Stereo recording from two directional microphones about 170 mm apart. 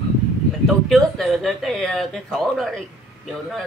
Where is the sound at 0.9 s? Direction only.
Centre (ahead or behind).